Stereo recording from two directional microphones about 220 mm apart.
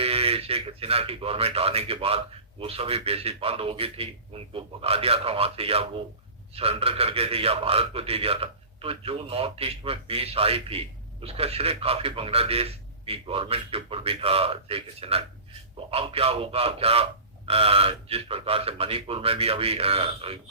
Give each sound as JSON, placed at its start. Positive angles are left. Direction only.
{"t": 0.0, "sound": "a man's voice", "side_deg": -25}